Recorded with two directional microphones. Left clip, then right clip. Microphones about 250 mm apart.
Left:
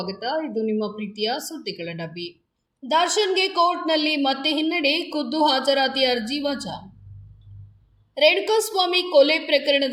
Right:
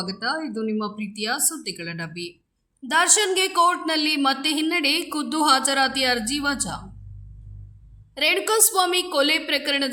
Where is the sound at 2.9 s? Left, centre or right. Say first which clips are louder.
Even; right.